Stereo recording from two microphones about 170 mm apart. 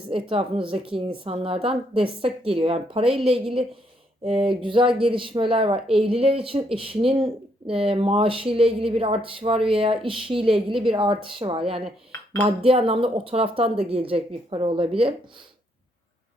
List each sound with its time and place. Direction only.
0.1 s speech: 35° right (ahead or behind)
3.0 s a woman's voice: 5° right (ahead or behind)
4.2 s speech: 35° right (ahead or behind)